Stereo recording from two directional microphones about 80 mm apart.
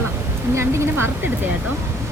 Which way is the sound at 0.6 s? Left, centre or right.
Right.